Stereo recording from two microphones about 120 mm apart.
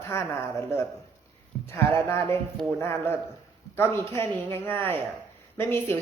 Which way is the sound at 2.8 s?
20° left (ahead or behind).